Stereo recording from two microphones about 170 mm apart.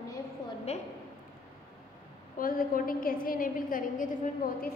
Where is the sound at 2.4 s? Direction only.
55° left (ahead or behind).